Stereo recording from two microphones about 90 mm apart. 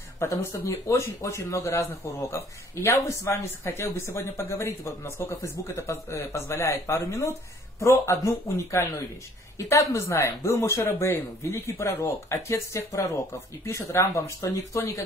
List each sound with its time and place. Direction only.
0.2 s speech: 30° left (ahead or behind)